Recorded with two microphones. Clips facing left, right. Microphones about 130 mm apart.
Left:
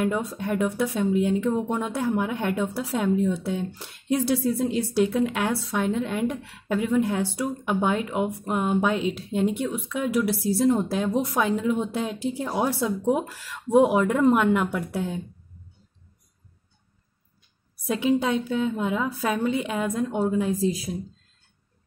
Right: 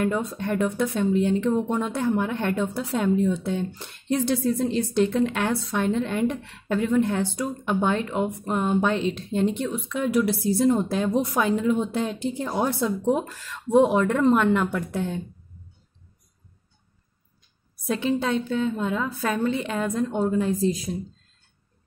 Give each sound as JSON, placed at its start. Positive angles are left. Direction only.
{"t": 0.0, "sound": "speech", "side_deg": 5}
{"t": 17.8, "sound": "a woman's voice", "side_deg": 10}